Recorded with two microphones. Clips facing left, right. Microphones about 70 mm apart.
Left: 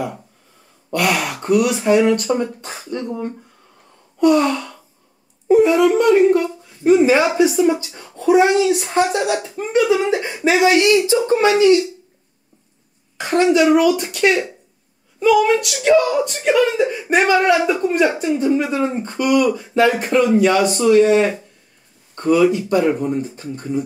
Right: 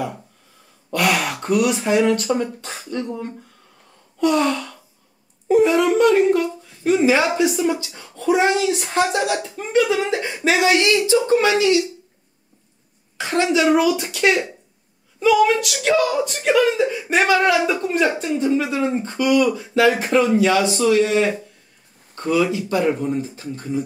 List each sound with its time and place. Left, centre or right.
0.8 s speech: centre
4.2 s gasp: centre
5.5 s speech: centre
11.1 s speech: centre
11.5 s speech: centre
13.4 s speech: centre
22.1 s speech: centre